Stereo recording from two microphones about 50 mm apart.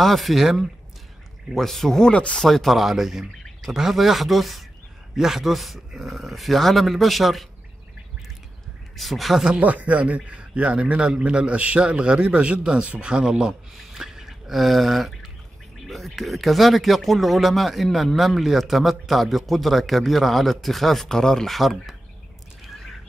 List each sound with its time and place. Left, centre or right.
0.0 s speech: centre
2.1 s speech: left
2.4 s speech: centre
8.9 s speech: centre
9.5 s speech: right; by 13.6 s centre
13.9 s a sound: centre
15.9 s speech: centre
21.5 s speech: centre
22.6 s a sound: centre